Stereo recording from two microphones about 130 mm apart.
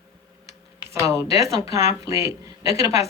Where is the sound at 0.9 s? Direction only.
25° right (ahead or behind).